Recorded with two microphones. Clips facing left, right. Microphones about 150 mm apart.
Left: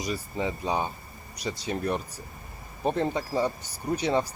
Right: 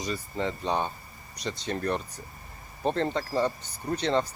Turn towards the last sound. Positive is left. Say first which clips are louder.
# left 1 dB
turn(degrees=10)  # may be behind; listen again after turning